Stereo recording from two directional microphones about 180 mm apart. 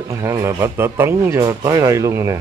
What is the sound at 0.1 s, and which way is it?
Speech, 15° right (ahead or behind).